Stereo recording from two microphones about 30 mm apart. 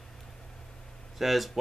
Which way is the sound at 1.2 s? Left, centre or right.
Centre.